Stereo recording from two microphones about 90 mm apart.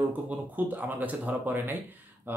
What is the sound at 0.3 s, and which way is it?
Speech, 20° right (ahead or behind).